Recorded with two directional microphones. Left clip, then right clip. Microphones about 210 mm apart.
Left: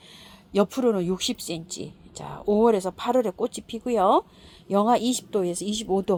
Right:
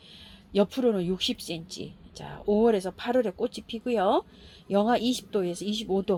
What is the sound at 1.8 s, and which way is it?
Speech, 5° left (ahead or behind).